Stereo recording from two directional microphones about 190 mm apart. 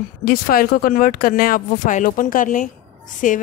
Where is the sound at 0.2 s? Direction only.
50° left (ahead or behind).